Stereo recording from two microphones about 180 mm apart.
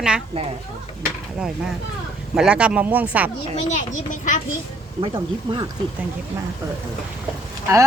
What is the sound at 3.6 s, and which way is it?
Speech, 40° left (ahead or behind).